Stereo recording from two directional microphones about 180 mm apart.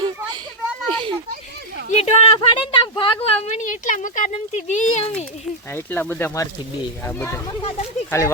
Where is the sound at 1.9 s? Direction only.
35° left (ahead or behind).